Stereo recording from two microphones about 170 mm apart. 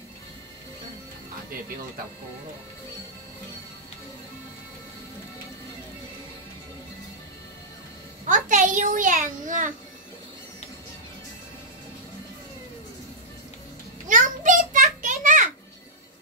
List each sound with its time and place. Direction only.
8.3 s a child's voice: 50° right (ahead or behind)
14.0 s children playing: 50° right (ahead or behind)